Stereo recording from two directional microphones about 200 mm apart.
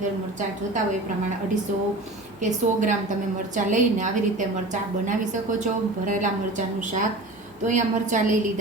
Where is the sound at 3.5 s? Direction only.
40° right (ahead or behind).